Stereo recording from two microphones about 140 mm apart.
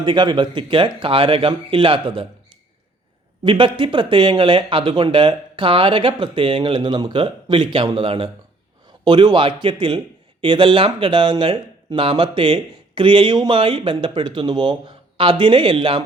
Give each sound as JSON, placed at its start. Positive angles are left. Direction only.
{"t": 0.0, "sound": "speech", "side_deg": -35}
{"t": 3.4, "sound": "speech", "side_deg": -35}